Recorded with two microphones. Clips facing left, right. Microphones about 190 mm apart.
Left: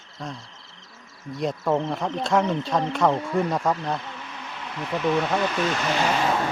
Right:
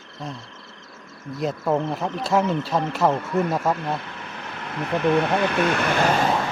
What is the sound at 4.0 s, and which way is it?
Speech, 55° right (ahead or behind).